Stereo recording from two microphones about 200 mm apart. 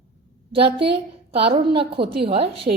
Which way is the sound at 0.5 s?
25° right (ahead or behind).